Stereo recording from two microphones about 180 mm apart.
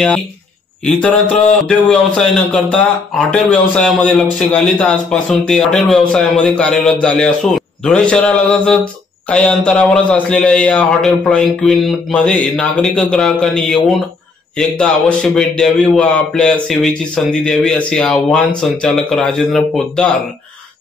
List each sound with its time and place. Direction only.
0.8 s a man's voice: 5° left (ahead or behind)